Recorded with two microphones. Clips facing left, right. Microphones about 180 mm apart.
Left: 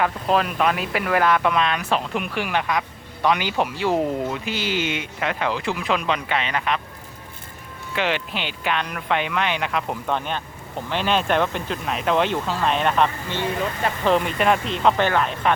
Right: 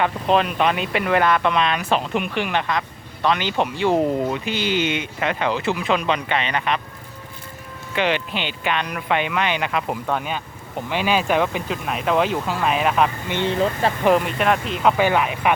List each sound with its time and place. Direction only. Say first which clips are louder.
0.0 s speech: right 2 dB; centre (ahead or behind)
7.9 s speech: right 3 dB; centre (ahead or behind)
13.2 s speech: right 3 dB; 20° right (ahead or behind)
14.0 s speech: right 1 dB; 5° right (ahead or behind)